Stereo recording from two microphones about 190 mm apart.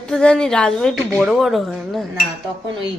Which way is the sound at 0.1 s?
5° left (ahead or behind).